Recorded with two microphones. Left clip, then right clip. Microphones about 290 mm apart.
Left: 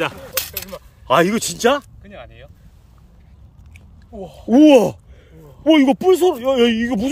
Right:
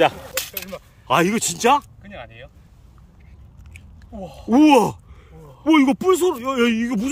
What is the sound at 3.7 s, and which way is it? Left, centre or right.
Speech, centre.